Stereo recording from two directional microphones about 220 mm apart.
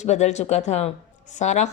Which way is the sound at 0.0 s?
30° left (ahead or behind).